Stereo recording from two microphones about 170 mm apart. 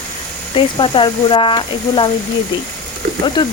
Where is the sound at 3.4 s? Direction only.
25° left (ahead or behind).